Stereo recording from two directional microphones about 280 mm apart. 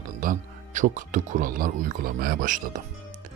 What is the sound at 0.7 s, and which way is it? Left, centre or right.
Speech, right.